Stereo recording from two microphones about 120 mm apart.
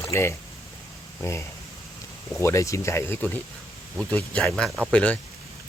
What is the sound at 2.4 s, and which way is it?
Speech, 25° left (ahead or behind).